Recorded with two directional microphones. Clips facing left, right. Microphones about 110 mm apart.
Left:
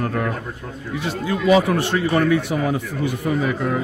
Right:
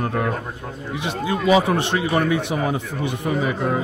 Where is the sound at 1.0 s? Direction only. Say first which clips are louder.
Left 1 dB; 20° right (ahead or behind).